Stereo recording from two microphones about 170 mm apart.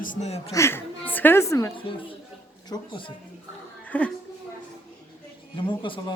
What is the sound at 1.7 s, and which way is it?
A woman's voice, 30° left (ahead or behind).